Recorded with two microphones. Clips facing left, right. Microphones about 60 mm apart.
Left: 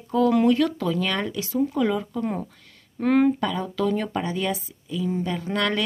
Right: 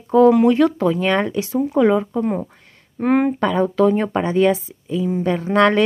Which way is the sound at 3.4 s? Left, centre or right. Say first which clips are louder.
Right 9 dB; right.